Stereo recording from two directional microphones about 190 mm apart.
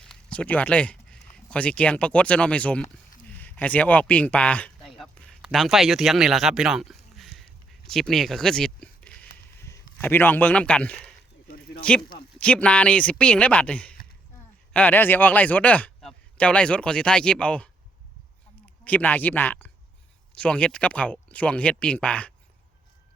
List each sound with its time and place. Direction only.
0.0 s speech: 5° left (ahead or behind)
18.9 s speech: 10° left (ahead or behind)